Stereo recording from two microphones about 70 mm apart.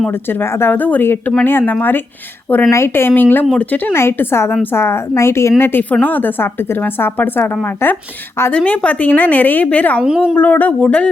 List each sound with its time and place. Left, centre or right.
0.1 s a woman's voice: left
2.6 s a woman's voice: left
3.9 s speech: left
5.9 s a woman's voice: left
10.0 s a woman's voice: centre
10.3 s a woman's voice: left